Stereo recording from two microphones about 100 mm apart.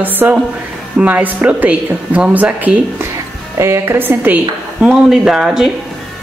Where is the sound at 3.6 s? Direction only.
25° right (ahead or behind).